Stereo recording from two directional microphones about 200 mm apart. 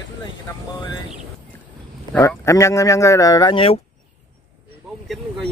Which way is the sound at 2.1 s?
10° left (ahead or behind).